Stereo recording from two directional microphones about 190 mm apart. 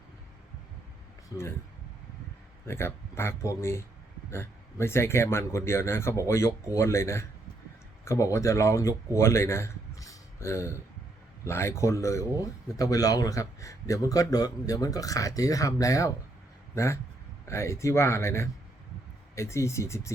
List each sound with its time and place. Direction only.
2.6 s speech: 15° left (ahead or behind)
9.1 s a sound: 15° left (ahead or behind)
11.4 s a man's voice: 15° left (ahead or behind)